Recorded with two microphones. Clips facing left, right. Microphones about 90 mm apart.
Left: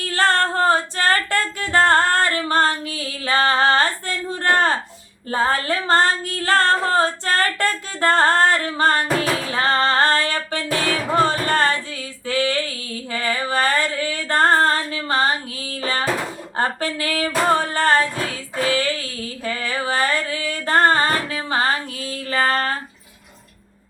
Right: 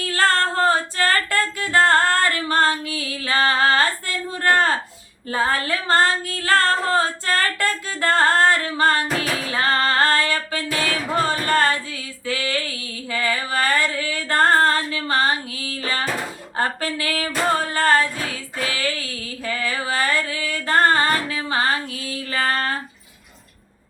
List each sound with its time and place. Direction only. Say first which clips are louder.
0.1 s music: left 1 dB; 25° left (ahead or behind)
2.5 s female singing: even; 25° left (ahead or behind)
5.3 s music: left 2 dB; 30° left (ahead or behind)
9.5 s female singing: even; 25° left (ahead or behind)
16.6 s music: left 1 dB; 25° left (ahead or behind)
18.5 s female singing: left 5 dB; 30° left (ahead or behind)
22.3 s a sound: left 3 dB; 30° left (ahead or behind)